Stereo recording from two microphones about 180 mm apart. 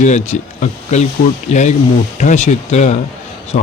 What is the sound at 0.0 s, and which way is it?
Speech, 40° left (ahead or behind).